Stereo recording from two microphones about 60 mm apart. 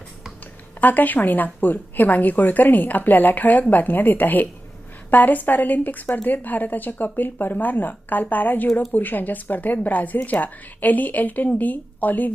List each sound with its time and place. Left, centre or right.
0.8 s a woman's voice: left